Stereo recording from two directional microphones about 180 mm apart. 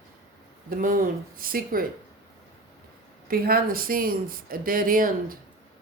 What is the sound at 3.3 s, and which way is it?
Speech, 55° right (ahead or behind).